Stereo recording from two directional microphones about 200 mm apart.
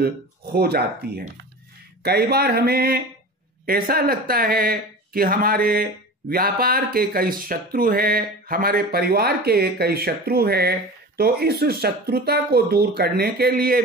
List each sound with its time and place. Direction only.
0.0 s speech: 50° right (ahead or behind)